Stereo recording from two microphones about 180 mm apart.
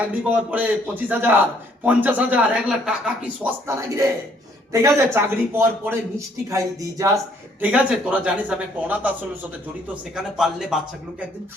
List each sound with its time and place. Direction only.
0.3 s a man's voice: 10° right (ahead or behind)
7.6 s a man's voice: 5° right (ahead or behind)